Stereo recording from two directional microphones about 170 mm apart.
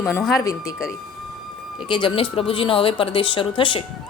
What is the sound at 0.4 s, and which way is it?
Speech, 20° left (ahead or behind).